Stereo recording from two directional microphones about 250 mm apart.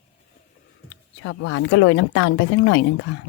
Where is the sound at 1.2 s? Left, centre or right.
Left.